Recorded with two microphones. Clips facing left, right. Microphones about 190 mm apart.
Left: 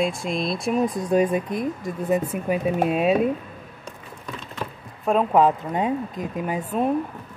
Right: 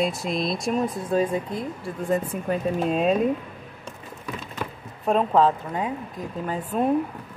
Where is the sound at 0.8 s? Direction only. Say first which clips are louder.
Left 3 dB; 15° left (ahead or behind).